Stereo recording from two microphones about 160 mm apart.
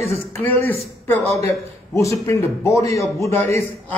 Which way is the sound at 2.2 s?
15° left (ahead or behind).